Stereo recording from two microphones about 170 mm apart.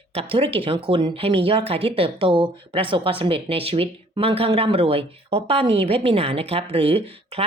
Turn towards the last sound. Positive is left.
turn(degrees=-35)  # may be behind; listen again after turning